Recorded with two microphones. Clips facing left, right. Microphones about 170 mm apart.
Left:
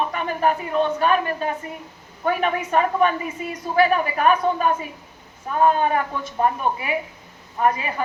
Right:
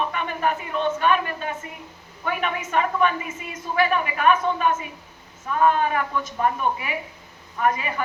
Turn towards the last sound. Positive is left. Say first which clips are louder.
# left 2 dB
turn(degrees=35)  # may be behind; listen again after turning